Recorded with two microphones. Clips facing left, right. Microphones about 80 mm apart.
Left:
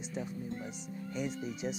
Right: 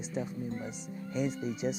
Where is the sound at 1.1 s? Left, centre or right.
Right.